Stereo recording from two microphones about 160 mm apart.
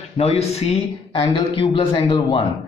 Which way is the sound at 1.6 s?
30° left (ahead or behind).